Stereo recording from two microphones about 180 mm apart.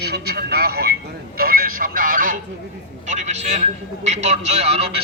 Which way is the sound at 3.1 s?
40° right (ahead or behind).